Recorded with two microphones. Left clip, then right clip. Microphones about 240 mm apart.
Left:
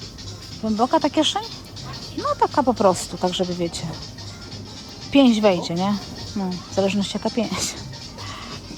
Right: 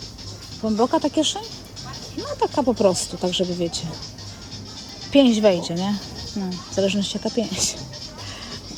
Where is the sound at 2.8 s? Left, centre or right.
Centre.